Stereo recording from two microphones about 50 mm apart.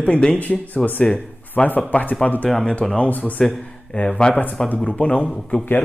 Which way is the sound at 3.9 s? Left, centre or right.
Left.